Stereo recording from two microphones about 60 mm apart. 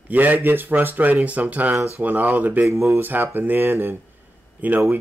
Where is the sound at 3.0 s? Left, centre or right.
Right.